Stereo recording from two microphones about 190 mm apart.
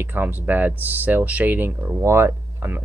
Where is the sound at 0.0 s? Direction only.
10° right (ahead or behind).